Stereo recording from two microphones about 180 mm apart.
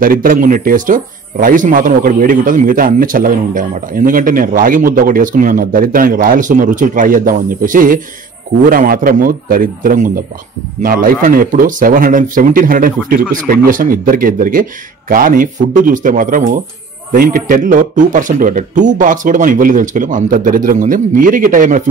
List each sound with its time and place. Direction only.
0.0 s speech: 50° right (ahead or behind)